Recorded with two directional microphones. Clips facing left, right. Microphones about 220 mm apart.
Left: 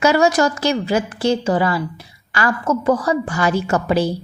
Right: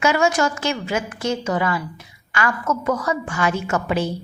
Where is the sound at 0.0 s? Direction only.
35° left (ahead or behind).